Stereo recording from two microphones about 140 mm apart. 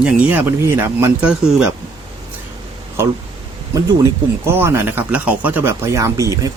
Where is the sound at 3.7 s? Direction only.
20° right (ahead or behind).